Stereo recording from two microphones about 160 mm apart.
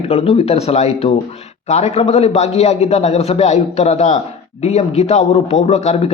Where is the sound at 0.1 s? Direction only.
40° left (ahead or behind).